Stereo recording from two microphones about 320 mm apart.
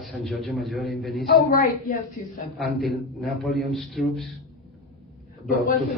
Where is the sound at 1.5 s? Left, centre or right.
Left.